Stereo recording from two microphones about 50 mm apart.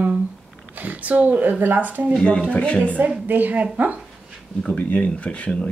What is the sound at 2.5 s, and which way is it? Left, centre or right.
Speech, left.